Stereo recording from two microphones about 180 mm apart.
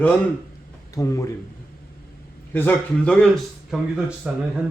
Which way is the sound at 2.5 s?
10° left (ahead or behind).